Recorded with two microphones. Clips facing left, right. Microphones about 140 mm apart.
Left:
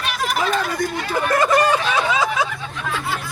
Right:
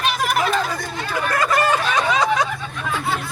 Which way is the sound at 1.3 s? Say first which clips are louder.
Left 3 dB; 25° left (ahead or behind).